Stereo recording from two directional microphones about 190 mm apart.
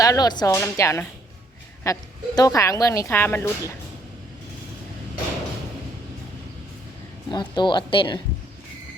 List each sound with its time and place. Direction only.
0.0 s speech: 20° left (ahead or behind)
7.3 s speech: 25° left (ahead or behind)